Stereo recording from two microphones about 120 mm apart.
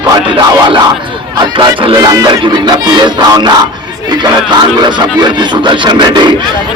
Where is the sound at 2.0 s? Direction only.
30° right (ahead or behind).